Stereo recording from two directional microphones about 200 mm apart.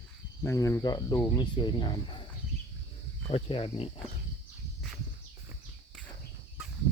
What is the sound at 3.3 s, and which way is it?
Speech, 30° left (ahead or behind).